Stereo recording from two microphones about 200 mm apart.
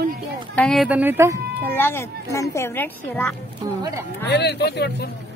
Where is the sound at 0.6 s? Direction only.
Centre (ahead or behind).